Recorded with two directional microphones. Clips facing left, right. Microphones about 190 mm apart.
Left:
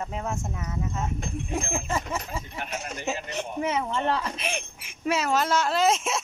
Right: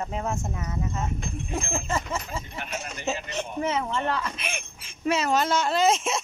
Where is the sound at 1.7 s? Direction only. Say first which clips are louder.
Even; 15° left (ahead or behind).